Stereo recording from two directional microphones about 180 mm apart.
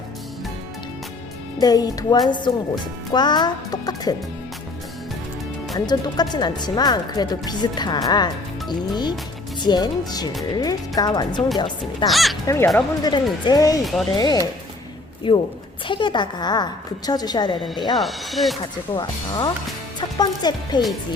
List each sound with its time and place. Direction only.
1.5 s speech: 20° left (ahead or behind)
5.7 s speech: 25° left (ahead or behind)
12.0 s speech: centre (ahead or behind)
12.5 s speech: 15° left (ahead or behind)
17.9 s speech: centre (ahead or behind)
20.0 s speech: 25° left (ahead or behind)